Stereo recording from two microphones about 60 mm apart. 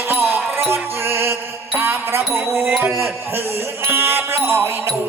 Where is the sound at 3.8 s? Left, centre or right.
Right.